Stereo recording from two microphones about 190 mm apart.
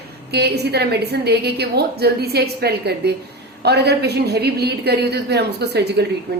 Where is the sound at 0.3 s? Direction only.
60° right (ahead or behind).